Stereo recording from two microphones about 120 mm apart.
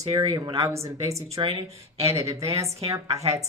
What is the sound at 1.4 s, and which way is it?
Speech, 45° right (ahead or behind).